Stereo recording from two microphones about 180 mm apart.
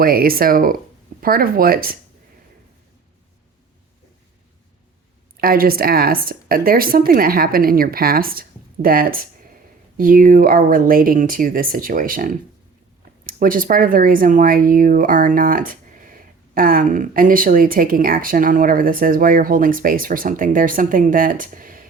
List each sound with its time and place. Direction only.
0.0 s speech: 55° right (ahead or behind)
5.4 s speech: 55° right (ahead or behind)